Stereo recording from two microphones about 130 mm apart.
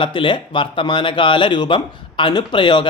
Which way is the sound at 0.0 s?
40° left (ahead or behind).